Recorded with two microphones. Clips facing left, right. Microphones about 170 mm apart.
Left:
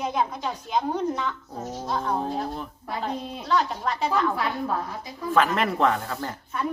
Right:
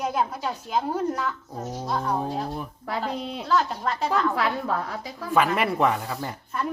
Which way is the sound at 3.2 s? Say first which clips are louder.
Right 2 dB; 90° right.